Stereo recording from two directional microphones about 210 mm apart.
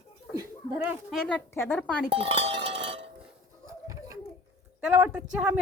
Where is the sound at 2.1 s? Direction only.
25° right (ahead or behind).